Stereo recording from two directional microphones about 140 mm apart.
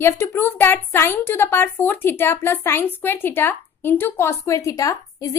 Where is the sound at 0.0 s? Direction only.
20° left (ahead or behind).